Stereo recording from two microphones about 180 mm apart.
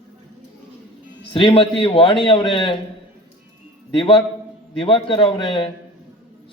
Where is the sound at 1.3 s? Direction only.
30° left (ahead or behind).